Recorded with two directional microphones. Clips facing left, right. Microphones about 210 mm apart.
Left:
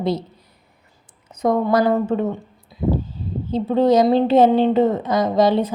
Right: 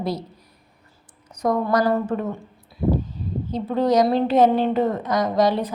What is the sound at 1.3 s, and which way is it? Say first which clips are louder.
A woman's voice: left 3 dB; 20° left (ahead or behind).